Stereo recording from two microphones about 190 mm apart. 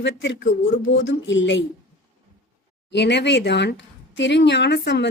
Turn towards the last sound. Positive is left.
turn(degrees=65)  # may be behind; listen again after turning